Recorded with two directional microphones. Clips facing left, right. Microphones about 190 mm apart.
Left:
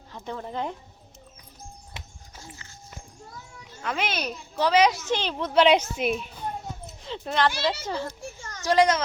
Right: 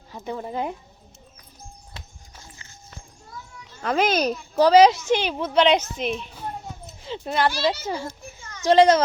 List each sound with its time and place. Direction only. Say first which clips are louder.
0.1 s speech: right 4 dB; 10° right (ahead or behind)
3.8 s a child's voice: right 8 dB; 40° right (ahead or behind)
5.0 s speech: right 5 dB; 10° right (ahead or behind)
5.5 s a woman's voice: even; 5° left (ahead or behind)
7.0 s a child's voice: right 2 dB; 5° right (ahead or behind)
8.4 s children playing: left 2 dB; 45° left (ahead or behind)
8.6 s a child's voice: right 6 dB; 25° right (ahead or behind)